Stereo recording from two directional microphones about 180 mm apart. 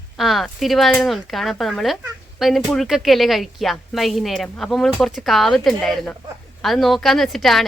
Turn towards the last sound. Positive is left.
turn(degrees=0)  # may be behind; listen again after turning